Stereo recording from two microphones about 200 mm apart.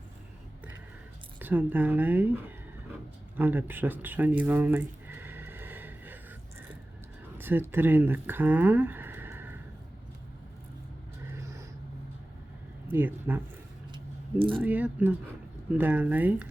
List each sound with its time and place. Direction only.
1.4 s a woman's voice: 10° right (ahead or behind)
3.3 s a sound: 10° right (ahead or behind)
7.3 s speech: 10° right (ahead or behind)
11.3 s vehicle: 15° right (ahead or behind)
12.9 s a woman's voice: 10° right (ahead or behind)
13.9 s a sound: 25° right (ahead or behind)
14.6 s a woman's voice: 10° right (ahead or behind)